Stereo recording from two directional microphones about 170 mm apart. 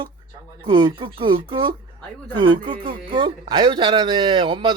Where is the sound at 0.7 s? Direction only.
30° right (ahead or behind).